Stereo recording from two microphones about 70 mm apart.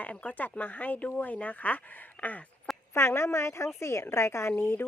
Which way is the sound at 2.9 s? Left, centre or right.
Left.